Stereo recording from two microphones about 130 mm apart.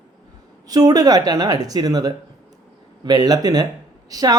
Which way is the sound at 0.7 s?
30° right (ahead or behind).